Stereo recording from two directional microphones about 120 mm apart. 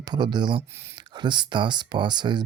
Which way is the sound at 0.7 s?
20° right (ahead or behind).